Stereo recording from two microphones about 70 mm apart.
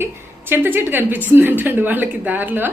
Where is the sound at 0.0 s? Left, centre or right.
Right.